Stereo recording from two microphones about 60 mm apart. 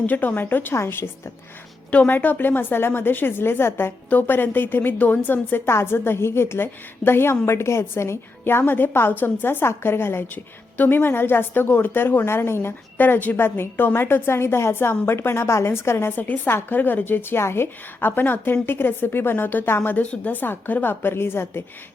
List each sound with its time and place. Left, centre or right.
0.0 s a woman's voice: left
1.9 s a woman's voice: left